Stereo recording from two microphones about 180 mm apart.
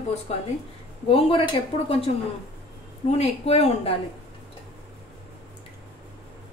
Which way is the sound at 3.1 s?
35° left (ahead or behind).